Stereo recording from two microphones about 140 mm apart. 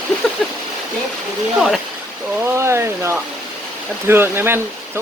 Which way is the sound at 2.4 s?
20° right (ahead or behind).